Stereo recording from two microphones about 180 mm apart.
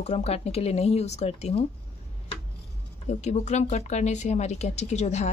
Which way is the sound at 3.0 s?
40° left (ahead or behind).